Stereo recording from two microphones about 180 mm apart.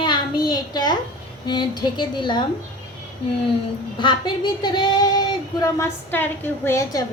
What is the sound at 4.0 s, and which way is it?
A woman's voice, 25° left (ahead or behind).